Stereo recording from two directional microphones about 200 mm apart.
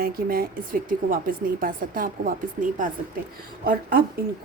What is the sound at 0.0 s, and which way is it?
A woman's voice, 50° right (ahead or behind).